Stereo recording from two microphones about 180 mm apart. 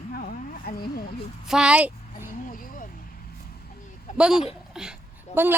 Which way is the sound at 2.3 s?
50° left (ahead or behind).